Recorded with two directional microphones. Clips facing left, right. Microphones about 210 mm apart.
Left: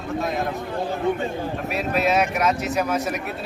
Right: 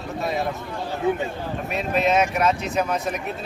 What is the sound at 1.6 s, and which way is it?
Speech, 5° left (ahead or behind).